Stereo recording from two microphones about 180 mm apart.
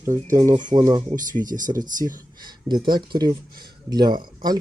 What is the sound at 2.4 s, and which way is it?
Speech, 25° right (ahead or behind).